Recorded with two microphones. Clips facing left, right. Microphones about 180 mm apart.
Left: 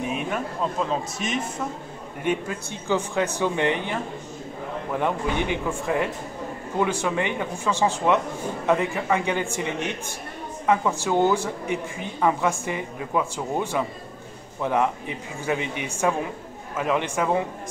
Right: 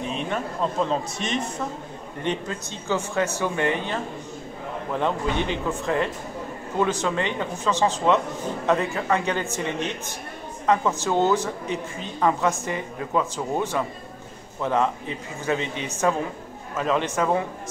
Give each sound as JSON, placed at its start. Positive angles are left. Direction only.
{"t": 0.0, "sound": "a man's voice", "side_deg": 10}